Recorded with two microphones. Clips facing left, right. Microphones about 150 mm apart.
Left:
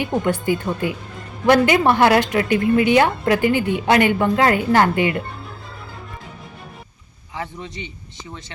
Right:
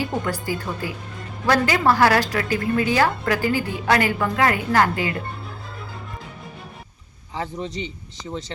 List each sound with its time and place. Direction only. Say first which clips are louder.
0.0 s a woman's voice: left 5 dB; 25° left (ahead or behind)